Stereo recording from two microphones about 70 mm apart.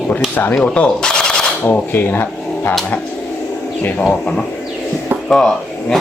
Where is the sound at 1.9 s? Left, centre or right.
Left.